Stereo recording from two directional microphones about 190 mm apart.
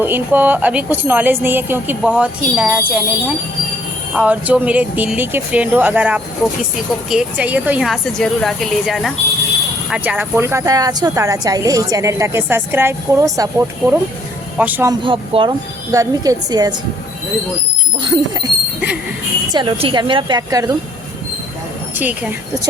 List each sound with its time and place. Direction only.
0.0 s speech: 10° right (ahead or behind)
15.0 s speech: 25° right (ahead or behind)
18.0 s speech: 20° right (ahead or behind)
19.5 s speech: 25° right (ahead or behind)
21.9 s speech: 10° right (ahead or behind)